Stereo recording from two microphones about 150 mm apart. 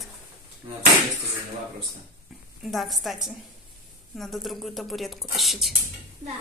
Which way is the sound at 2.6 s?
Centre (ahead or behind).